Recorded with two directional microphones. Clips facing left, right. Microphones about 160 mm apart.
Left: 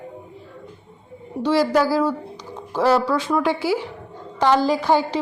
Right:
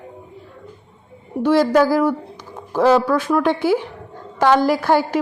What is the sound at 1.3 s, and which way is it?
Speech, centre (ahead or behind).